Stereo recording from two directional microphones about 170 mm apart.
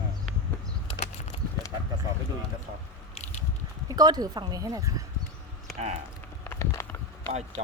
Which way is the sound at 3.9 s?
25° right (ahead or behind).